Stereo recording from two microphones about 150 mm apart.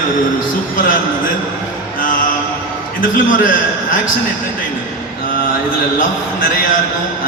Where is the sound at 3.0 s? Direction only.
65° left (ahead or behind).